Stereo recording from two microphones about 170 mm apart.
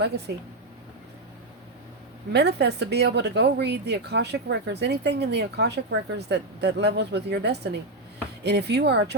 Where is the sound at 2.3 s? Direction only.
75° right (ahead or behind).